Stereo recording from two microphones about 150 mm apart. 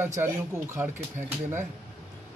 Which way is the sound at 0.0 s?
15° right (ahead or behind).